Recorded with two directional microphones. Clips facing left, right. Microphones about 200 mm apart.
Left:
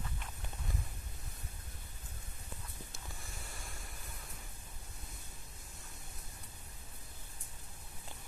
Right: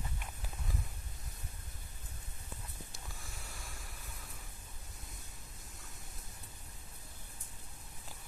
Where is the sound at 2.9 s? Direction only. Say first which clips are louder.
Left 1 dB; centre (ahead or behind).